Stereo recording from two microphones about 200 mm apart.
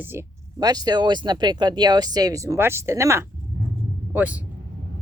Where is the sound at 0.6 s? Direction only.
20° right (ahead or behind).